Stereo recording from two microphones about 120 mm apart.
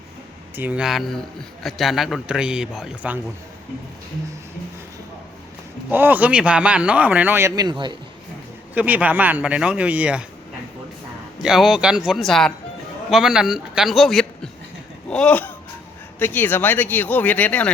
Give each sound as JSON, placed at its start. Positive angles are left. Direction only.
{"t": 0.5, "sound": "a man's voice", "side_deg": -15}
{"t": 5.9, "sound": "speech", "side_deg": -15}
{"t": 7.5, "sound": "a man's voice", "side_deg": -35}
{"t": 8.7, "sound": "speech", "side_deg": -15}
{"t": 11.4, "sound": "a man's voice", "side_deg": -5}